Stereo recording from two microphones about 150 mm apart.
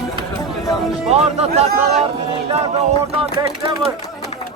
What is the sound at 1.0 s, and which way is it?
Speech, 45° right (ahead or behind).